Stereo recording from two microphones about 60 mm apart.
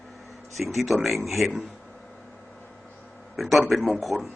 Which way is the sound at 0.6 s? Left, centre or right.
Centre.